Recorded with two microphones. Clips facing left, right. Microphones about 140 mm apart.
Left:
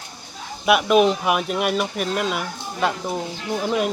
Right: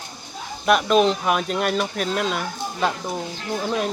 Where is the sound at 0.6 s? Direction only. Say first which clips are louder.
Left 1 dB; 10° left (ahead or behind).